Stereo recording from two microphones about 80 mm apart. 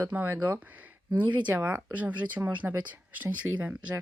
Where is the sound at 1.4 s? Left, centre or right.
Centre.